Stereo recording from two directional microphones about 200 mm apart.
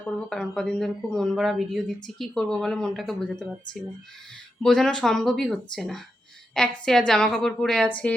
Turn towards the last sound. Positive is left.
turn(degrees=5)  # may be behind; listen again after turning